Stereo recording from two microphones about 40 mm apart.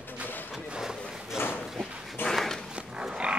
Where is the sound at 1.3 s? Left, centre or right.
Left.